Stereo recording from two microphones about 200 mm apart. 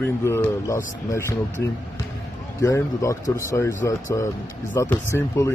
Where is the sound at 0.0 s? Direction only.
10° left (ahead or behind).